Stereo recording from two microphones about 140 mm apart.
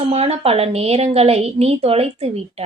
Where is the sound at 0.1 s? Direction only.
45° right (ahead or behind).